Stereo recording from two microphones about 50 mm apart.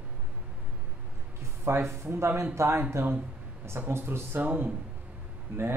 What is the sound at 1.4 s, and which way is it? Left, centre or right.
Speech, right.